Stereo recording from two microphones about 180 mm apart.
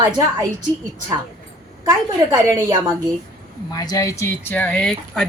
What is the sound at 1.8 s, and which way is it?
Speech, 20° right (ahead or behind).